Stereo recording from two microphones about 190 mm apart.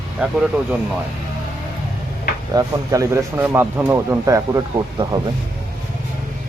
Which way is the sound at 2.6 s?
15° right (ahead or behind).